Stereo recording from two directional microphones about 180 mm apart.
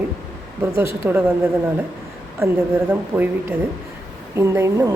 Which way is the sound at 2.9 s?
10° right (ahead or behind).